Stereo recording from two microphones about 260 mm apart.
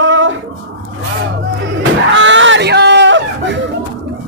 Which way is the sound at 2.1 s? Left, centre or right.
Right.